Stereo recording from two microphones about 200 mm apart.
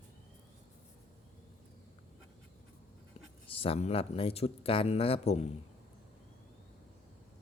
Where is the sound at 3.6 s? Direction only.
30° left (ahead or behind).